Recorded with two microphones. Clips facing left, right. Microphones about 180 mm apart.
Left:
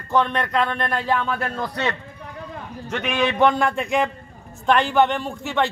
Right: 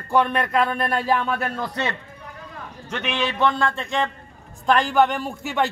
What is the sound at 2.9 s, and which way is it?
A man's voice, 10° left (ahead or behind).